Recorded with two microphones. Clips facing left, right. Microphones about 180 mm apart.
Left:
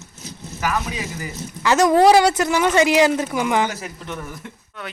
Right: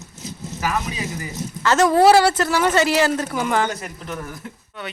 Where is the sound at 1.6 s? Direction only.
15° left (ahead or behind).